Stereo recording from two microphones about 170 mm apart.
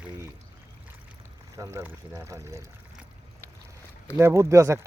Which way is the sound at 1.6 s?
15° right (ahead or behind).